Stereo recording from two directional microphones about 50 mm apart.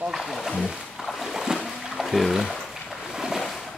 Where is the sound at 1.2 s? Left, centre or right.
Centre.